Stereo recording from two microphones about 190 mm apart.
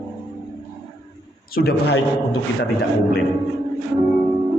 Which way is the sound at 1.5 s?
55° left (ahead or behind).